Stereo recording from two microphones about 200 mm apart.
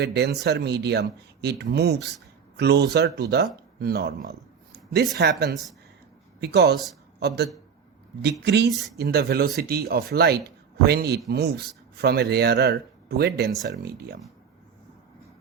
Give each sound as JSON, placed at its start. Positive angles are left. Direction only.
{"t": 0.0, "sound": "speech", "side_deg": -55}
{"t": 6.4, "sound": "speech", "side_deg": -55}